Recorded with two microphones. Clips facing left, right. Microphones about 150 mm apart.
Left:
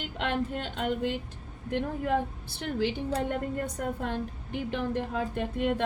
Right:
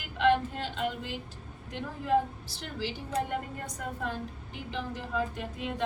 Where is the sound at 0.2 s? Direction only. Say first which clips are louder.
Right 5 dB; 55° left (ahead or behind).